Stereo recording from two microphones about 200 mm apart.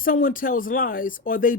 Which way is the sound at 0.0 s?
45° left (ahead or behind).